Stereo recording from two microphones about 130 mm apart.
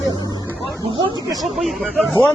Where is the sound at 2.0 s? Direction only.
20° right (ahead or behind).